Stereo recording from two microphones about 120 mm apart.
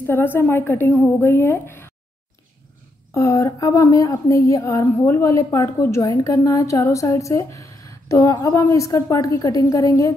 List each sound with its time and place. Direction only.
0.0 s a woman's voice: 15° left (ahead or behind)
3.1 s a woman's voice: 25° left (ahead or behind)